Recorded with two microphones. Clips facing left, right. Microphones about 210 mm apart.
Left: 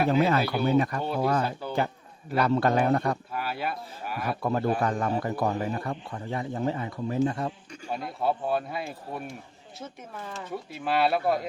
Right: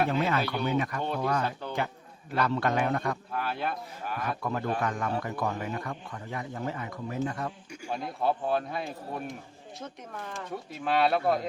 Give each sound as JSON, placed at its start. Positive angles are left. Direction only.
{"t": 0.1, "sound": "a man's voice", "side_deg": 35}
{"t": 3.3, "sound": "speech", "side_deg": 5}
{"t": 4.4, "sound": "a man's voice", "side_deg": 35}
{"t": 7.9, "sound": "speech", "side_deg": 5}
{"t": 10.4, "sound": "speech", "side_deg": 5}